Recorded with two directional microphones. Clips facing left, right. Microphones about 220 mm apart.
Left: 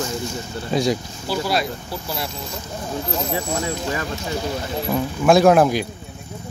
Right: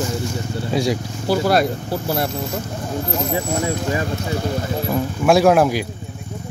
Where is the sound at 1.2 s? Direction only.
50° right (ahead or behind).